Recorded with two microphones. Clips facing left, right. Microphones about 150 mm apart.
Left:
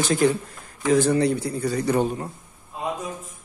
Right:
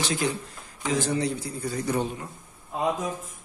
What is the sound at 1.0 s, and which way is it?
A man's voice, 60° left (ahead or behind).